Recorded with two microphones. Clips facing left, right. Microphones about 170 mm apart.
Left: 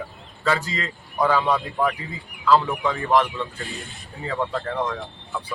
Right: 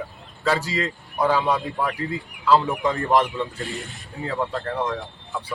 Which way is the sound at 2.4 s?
15° right (ahead or behind).